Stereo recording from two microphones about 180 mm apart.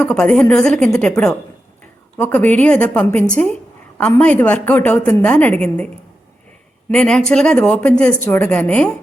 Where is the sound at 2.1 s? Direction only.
10° left (ahead or behind).